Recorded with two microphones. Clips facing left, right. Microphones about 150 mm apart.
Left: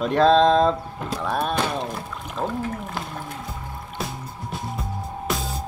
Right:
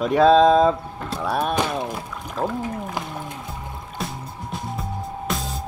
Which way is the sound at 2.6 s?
15° right (ahead or behind).